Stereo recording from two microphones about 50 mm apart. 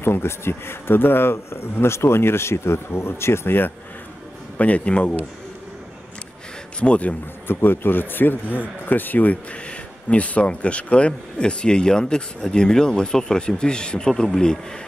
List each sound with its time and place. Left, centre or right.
0.0 s speech: left
4.6 s a man's voice: left
6.8 s a man's voice: left
7.4 s speech: left
9.5 s speech: left